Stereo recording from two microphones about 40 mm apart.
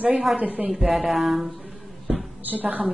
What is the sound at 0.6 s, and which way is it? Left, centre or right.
Speech, centre.